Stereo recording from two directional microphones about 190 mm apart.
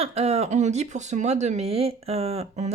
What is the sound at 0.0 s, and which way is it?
Speech, 35° right (ahead or behind).